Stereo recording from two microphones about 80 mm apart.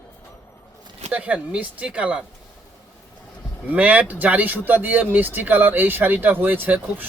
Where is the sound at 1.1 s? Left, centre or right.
Centre.